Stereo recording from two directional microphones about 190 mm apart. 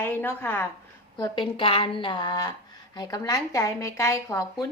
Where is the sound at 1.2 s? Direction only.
25° left (ahead or behind).